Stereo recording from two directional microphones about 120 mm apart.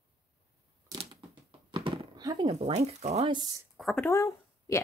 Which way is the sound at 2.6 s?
65° right (ahead or behind).